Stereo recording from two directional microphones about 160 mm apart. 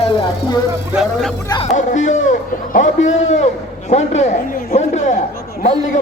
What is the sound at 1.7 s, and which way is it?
A man's voice, 50° left (ahead or behind).